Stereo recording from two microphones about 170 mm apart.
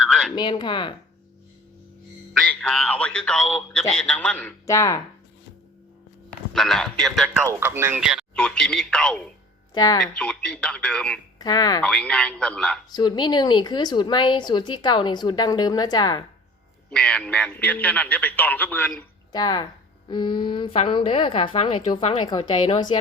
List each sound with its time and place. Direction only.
0.0 s a sound: 5° left (ahead or behind)
0.3 s a woman's voice: 25° left (ahead or behind)
2.4 s a man's voice: 5° left (ahead or behind)
4.6 s a man's voice: 20° left (ahead or behind)
6.5 s speech: centre (ahead or behind)
7.4 s speech: 15° right (ahead or behind)
8.4 s speech: 5° left (ahead or behind)
9.7 s a woman's voice: 25° left (ahead or behind)
10.0 s speech: 5° left (ahead or behind)
11.3 s speech: 25° left (ahead or behind)
11.8 s a man's voice: 5° left (ahead or behind)
12.9 s a woman's voice: 25° left (ahead or behind)
16.9 s a man's voice: 5° left (ahead or behind)
19.3 s a woman's voice: 25° left (ahead or behind)